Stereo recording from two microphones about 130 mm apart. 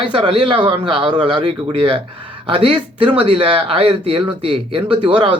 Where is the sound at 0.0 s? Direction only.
40° right (ahead or behind).